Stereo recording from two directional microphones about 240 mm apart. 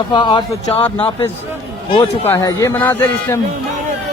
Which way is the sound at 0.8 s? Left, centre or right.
Centre.